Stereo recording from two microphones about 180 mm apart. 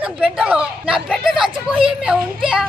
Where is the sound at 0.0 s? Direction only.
5° right (ahead or behind).